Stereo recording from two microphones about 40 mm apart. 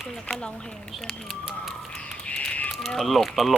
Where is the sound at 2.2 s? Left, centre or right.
Left.